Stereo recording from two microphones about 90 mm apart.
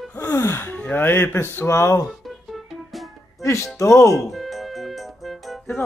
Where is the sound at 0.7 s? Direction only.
20° left (ahead or behind).